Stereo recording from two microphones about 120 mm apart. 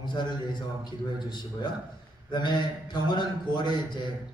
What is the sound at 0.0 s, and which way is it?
Speech, 40° left (ahead or behind).